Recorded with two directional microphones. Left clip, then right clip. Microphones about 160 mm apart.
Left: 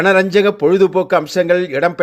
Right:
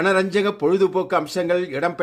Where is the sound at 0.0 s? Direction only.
10° left (ahead or behind).